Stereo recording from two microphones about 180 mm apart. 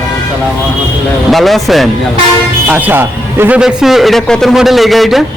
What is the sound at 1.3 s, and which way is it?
A man's voice, centre (ahead or behind).